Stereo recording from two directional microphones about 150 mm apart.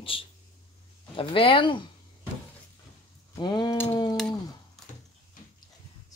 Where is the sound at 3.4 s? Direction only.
30° left (ahead or behind).